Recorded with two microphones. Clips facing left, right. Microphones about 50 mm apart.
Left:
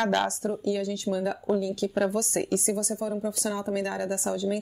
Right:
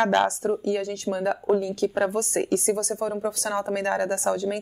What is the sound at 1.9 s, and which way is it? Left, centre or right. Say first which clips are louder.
Speech: right 2 dB; right.